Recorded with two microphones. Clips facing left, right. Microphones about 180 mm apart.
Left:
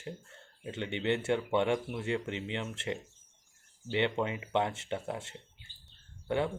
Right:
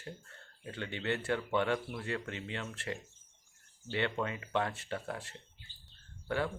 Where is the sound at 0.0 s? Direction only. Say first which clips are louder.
Left 4 dB; 20° left (ahead or behind).